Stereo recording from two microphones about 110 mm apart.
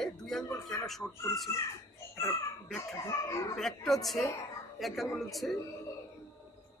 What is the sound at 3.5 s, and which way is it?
A man's voice, 5° left (ahead or behind).